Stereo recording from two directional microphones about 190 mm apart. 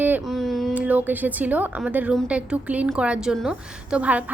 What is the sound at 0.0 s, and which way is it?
A woman's voice, 5° right (ahead or behind).